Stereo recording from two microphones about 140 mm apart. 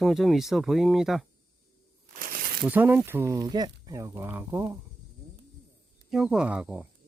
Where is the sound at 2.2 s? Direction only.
90° right.